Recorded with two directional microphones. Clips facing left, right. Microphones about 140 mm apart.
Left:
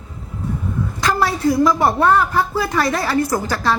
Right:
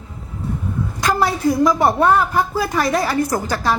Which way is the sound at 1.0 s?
20° right (ahead or behind).